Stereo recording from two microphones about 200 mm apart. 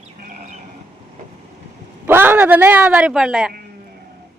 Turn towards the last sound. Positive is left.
turn(degrees=0)  # may be behind; listen again after turning